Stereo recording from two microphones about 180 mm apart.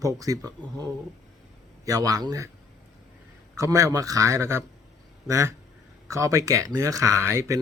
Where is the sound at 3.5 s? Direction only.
15° right (ahead or behind).